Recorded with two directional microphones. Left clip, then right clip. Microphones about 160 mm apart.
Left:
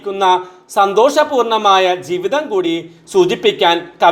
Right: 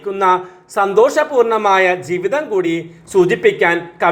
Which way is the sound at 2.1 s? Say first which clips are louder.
Left 1 dB; 40° left (ahead or behind).